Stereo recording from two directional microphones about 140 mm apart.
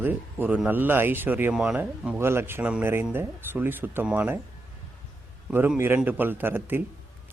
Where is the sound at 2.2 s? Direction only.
15° right (ahead or behind).